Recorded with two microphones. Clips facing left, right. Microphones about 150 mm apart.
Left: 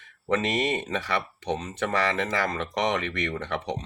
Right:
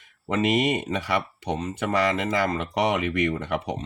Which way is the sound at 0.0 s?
10° right (ahead or behind).